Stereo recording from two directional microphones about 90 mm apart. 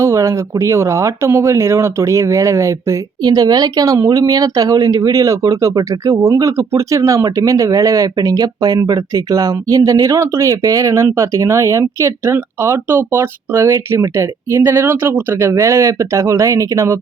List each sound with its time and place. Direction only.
0.0 s speech: 35° right (ahead or behind)
3.2 s speech: 45° right (ahead or behind); by 17.0 s 30° right (ahead or behind)